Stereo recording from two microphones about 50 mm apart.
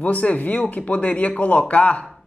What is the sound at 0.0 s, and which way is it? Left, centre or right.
Speech, left.